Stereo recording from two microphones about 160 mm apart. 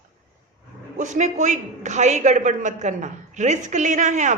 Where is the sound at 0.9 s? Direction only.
50° right (ahead or behind).